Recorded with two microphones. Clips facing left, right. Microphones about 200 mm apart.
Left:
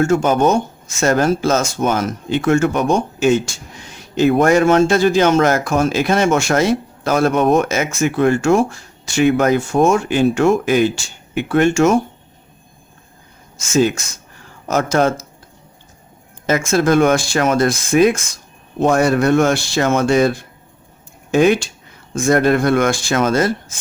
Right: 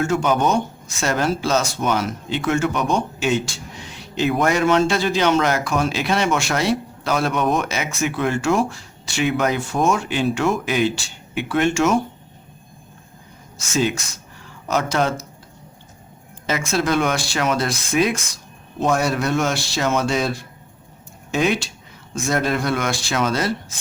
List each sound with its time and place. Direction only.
0.0 s speech: 45° left (ahead or behind)
13.7 s speech: 45° left (ahead or behind)
16.5 s speech: 50° left (ahead or behind)